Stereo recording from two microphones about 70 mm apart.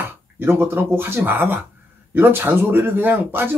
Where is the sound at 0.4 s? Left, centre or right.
Right.